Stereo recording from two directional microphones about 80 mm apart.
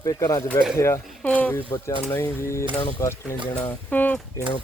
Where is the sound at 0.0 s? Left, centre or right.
Left.